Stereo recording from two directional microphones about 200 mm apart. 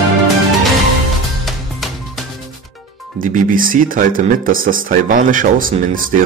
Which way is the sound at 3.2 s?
40° right (ahead or behind).